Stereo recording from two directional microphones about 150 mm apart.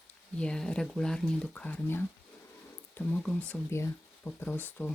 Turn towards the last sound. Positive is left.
turn(degrees=10)  # may be behind; listen again after turning